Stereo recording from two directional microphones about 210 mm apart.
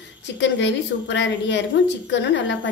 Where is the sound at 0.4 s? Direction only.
60° left (ahead or behind).